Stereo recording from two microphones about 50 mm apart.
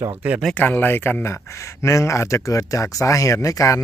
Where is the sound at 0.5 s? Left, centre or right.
Left.